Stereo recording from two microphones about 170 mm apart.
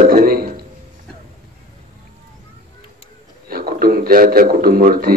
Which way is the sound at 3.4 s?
60° right (ahead or behind).